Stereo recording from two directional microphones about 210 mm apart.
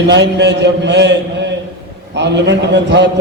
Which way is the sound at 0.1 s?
55° right (ahead or behind).